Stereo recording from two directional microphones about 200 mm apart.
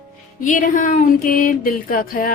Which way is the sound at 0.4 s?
40° left (ahead or behind).